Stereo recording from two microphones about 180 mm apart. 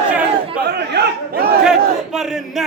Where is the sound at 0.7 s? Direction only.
65° right (ahead or behind).